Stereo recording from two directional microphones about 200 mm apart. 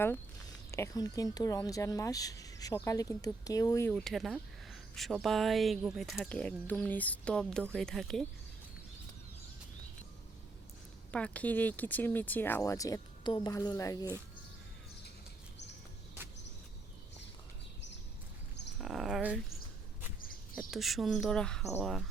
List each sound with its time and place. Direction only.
0.7 s speech: 15° left (ahead or behind)
3.9 s speech: centre (ahead or behind)
11.1 s speech: 5° left (ahead or behind)
18.8 s speech: centre (ahead or behind)
20.6 s speech: centre (ahead or behind)